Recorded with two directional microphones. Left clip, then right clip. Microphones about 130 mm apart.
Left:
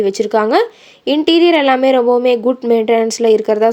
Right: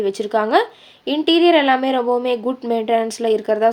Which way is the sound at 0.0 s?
40° left (ahead or behind).